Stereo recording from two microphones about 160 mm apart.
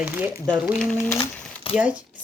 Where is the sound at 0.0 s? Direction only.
10° right (ahead or behind); by 1.1 s 5° left (ahead or behind).